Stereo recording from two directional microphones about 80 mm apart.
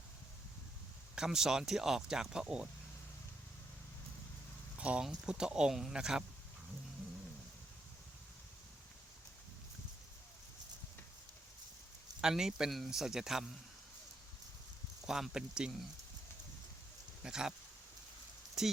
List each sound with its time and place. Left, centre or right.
1.1 s speech: centre
4.8 s speech: centre
12.2 s speech: centre
15.0 s speech: centre
17.2 s speech: centre
18.6 s speech: centre